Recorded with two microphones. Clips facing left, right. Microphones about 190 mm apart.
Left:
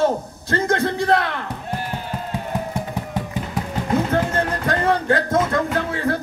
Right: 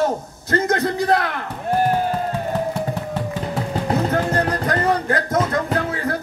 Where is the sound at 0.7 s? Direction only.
25° left (ahead or behind).